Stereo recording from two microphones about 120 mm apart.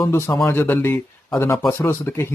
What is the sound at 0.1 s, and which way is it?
Speech, 20° left (ahead or behind).